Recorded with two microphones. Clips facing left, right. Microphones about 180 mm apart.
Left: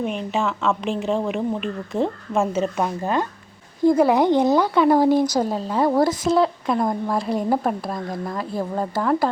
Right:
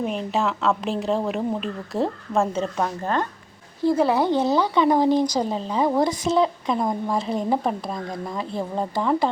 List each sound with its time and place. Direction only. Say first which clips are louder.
0.0 s speech: even; centre (ahead or behind)